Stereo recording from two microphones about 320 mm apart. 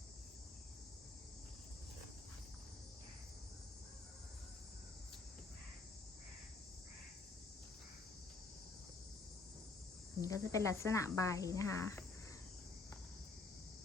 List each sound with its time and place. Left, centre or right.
10.2 s speech: centre